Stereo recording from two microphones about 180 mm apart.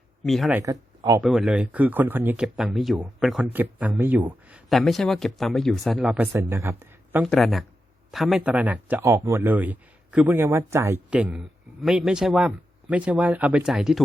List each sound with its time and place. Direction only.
0.2 s speech: centre (ahead or behind)
0.5 s speech: 20° right (ahead or behind)
1.2 s a man's voice: centre (ahead or behind)
7.2 s a man's voice: centre (ahead or behind)